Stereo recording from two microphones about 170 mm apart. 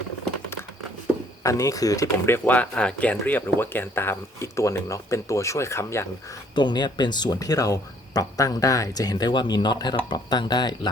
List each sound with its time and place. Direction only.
1.5 s speech: 20° left (ahead or behind)
6.6 s speech: 25° left (ahead or behind)